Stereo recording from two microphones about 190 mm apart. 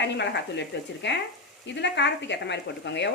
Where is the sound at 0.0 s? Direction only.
65° left (ahead or behind).